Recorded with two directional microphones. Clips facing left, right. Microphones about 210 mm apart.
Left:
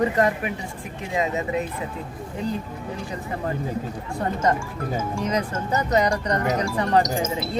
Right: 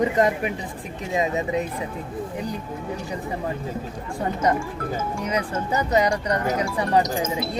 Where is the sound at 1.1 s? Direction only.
20° right (ahead or behind).